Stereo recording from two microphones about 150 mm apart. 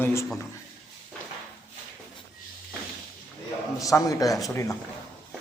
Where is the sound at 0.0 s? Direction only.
15° left (ahead or behind).